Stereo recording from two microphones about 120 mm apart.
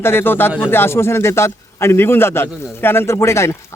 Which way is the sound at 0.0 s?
20° left (ahead or behind).